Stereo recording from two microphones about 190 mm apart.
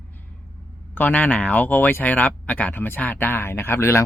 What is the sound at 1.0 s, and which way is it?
Speech, 10° left (ahead or behind).